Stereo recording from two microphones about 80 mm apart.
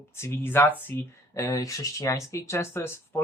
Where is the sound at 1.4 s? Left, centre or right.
Left.